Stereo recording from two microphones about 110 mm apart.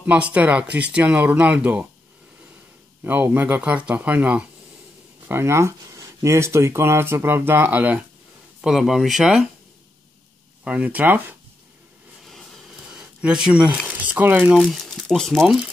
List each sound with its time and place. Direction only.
0.0 s speech: 10° right (ahead or behind)
3.0 s speech: 15° right (ahead or behind)
5.3 s speech: 25° right (ahead or behind)
8.5 s speech: 5° right (ahead or behind)
10.6 s speech: 10° right (ahead or behind)
12.3 s a sound: centre (ahead or behind)
14.1 s speech: 15° right (ahead or behind)
14.5 s speech: 5° right (ahead or behind)